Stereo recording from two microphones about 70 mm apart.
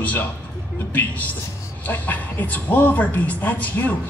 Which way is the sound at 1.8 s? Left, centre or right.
Left.